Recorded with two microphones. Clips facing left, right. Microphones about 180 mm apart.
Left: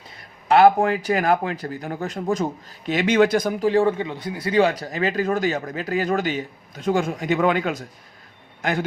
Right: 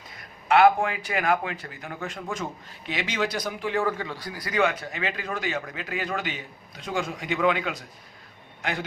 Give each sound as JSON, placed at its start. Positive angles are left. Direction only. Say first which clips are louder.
{"t": 0.4, "sound": "a man's voice", "louder": "left 4 dB", "side_deg": 35}